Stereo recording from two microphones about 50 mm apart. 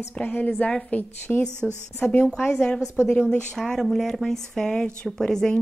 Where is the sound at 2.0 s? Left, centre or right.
Left.